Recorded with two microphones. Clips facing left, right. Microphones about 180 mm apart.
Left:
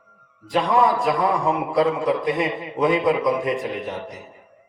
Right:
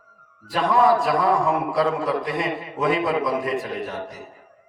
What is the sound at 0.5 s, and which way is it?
A man's voice, 20° left (ahead or behind).